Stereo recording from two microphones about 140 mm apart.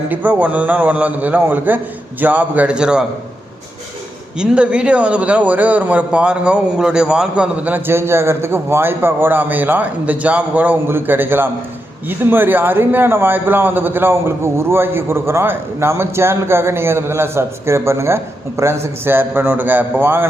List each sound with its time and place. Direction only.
0.1 s a man's voice: 10° right (ahead or behind)
4.4 s a man's voice: 10° right (ahead or behind)